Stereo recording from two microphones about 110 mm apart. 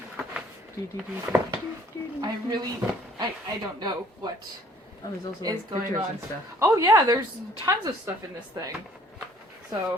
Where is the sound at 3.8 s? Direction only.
40° right (ahead or behind).